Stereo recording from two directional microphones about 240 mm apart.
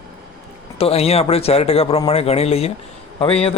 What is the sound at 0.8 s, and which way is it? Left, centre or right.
Speech, left.